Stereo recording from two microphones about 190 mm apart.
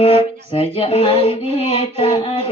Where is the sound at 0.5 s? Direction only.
30° left (ahead or behind).